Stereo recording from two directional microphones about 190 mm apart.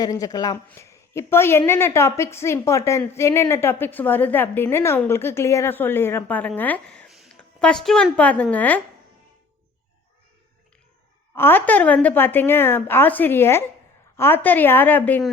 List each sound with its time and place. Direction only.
0.0 s a woman's voice: 20° left (ahead or behind)
11.3 s a woman's voice: 10° left (ahead or behind)